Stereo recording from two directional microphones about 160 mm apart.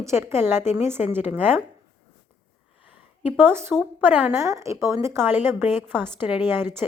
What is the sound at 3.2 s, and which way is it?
A woman's voice, 10° right (ahead or behind).